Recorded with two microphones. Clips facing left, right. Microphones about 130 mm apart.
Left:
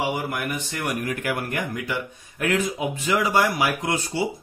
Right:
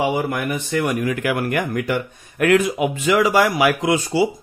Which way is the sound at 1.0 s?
90° right.